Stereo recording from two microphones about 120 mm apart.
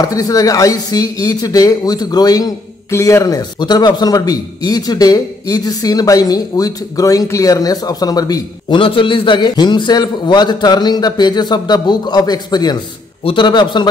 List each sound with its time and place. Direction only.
0.0 s speech: 30° left (ahead or behind)
8.7 s speech: 45° left (ahead or behind)